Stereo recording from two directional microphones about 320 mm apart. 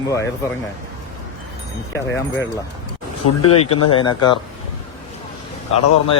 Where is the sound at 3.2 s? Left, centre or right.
Left.